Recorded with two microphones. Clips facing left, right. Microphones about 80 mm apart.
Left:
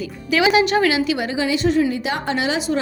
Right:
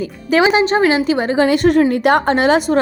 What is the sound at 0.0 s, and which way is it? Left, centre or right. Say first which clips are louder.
A woman's voice: right 4 dB; right.